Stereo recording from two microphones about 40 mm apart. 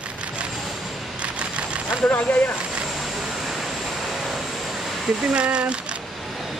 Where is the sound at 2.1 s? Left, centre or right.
Left.